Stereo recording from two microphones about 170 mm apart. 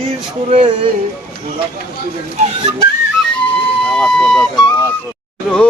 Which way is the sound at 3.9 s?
5° left (ahead or behind).